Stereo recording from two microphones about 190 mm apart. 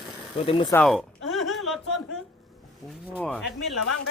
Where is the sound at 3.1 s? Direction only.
5° left (ahead or behind).